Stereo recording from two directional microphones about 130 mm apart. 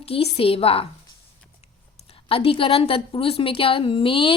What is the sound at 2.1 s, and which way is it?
A woman's voice, 45° left (ahead or behind).